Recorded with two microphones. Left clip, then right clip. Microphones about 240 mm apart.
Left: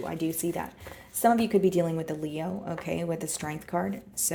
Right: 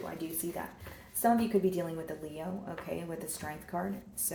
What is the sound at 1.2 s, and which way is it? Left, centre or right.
Speech, left.